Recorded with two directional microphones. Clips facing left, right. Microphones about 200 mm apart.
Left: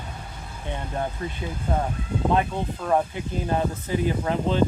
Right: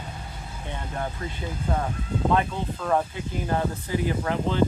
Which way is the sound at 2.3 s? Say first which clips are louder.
Left 1 dB; 15° left (ahead or behind).